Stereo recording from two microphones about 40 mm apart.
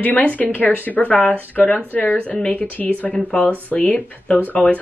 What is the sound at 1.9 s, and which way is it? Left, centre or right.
Speech, left.